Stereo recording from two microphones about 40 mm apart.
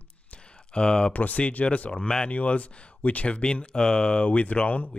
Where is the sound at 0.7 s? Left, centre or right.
Left.